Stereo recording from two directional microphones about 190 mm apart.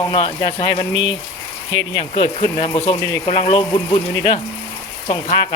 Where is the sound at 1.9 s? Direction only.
25° left (ahead or behind).